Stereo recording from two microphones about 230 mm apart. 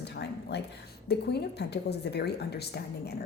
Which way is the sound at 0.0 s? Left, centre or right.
Left.